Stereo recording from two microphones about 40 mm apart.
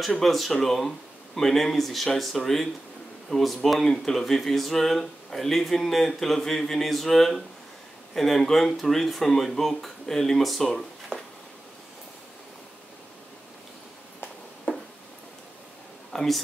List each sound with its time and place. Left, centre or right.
0.0 s speech: centre
14.7 s a sound: left
16.1 s speech: centre